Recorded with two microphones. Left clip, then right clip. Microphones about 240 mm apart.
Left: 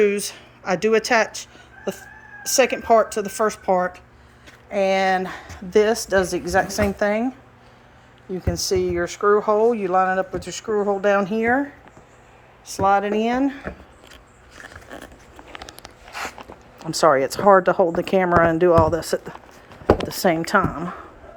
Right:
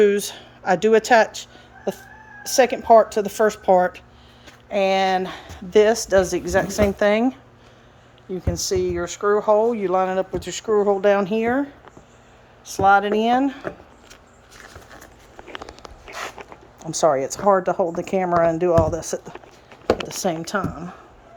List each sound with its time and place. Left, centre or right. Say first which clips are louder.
0.0 s speech: right 2 dB; centre
8.3 s speech: left 1 dB; centre
12.6 s speech: right 3 dB; centre
16.9 s speech: left 2 dB; centre